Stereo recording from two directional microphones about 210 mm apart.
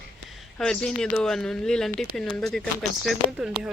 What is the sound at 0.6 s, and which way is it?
Speech, 5° left (ahead or behind).